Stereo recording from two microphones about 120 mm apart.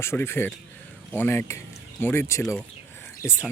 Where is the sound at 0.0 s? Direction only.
20° left (ahead or behind).